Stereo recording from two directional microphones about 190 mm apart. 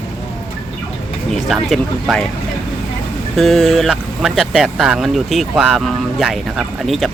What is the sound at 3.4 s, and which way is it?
Speech, centre (ahead or behind).